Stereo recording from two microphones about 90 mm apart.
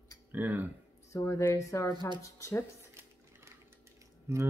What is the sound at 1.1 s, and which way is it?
Speech, 30° left (ahead or behind).